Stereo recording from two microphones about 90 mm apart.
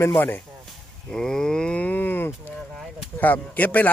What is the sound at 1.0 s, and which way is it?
Livestock, 5° left (ahead or behind).